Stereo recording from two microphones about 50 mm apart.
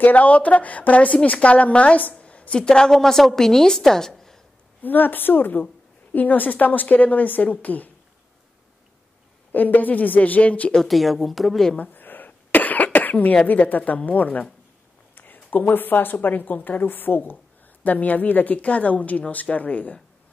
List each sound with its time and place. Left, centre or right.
0.0 s a woman's voice: left
2.6 s a woman's voice: centre
4.8 s a woman's voice: left
9.5 s a woman's voice: left
10.9 s a woman's voice: centre
11.7 s cough: left
13.5 s a woman's voice: left